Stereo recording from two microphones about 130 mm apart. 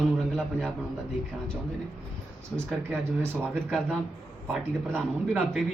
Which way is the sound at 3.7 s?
5° left (ahead or behind).